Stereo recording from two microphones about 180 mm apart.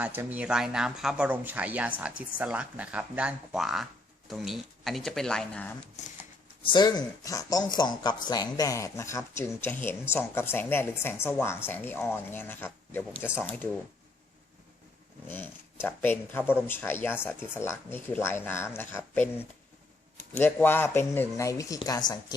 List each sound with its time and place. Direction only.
0.0 s speech: 10° right (ahead or behind); by 5.7 s 5° left (ahead or behind)
6.6 s speech: 25° left (ahead or behind)
15.3 s speech: 10° left (ahead or behind)
20.4 s speech: 10° left (ahead or behind)